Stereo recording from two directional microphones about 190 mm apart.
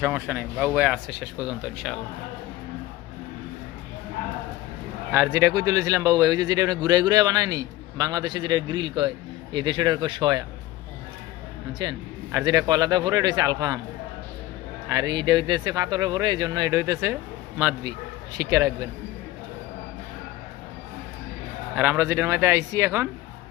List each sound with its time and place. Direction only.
0.0 s speech: 10° right (ahead or behind)
5.1 s speech: 15° right (ahead or behind)
11.8 s speech: 20° right (ahead or behind)
14.8 s speech: 20° right (ahead or behind)
21.8 s speech: 10° right (ahead or behind)